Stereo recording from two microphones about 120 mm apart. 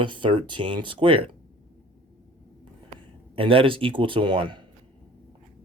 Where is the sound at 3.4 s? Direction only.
45° right (ahead or behind).